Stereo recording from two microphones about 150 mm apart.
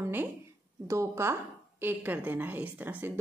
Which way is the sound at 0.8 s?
20° right (ahead or behind).